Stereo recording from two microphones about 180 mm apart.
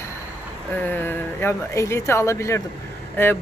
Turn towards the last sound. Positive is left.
turn(degrees=10)  # may be behind; listen again after turning